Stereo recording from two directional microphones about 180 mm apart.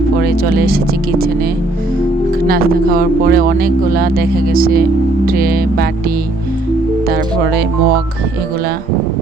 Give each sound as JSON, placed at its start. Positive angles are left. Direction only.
{"t": 0.5, "sound": "speech", "side_deg": -55}
{"t": 2.5, "sound": "speech", "side_deg": -55}